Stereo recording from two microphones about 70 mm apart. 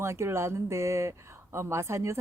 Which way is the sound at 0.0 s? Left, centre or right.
Right.